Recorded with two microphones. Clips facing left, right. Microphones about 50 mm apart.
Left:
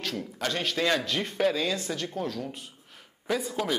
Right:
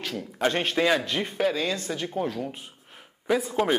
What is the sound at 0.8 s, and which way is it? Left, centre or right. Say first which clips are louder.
Speech: right 3 dB; centre.